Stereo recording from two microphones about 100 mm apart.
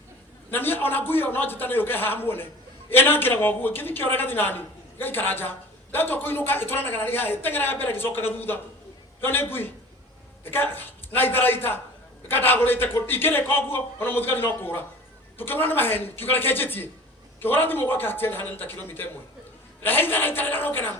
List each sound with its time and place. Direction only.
0.5 s a woman's voice: 20° left (ahead or behind)